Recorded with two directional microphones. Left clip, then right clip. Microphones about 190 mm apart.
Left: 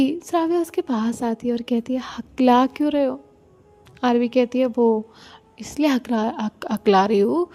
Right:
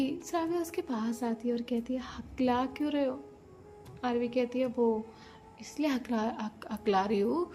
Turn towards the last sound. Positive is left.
turn(degrees=45)  # may be behind; listen again after turning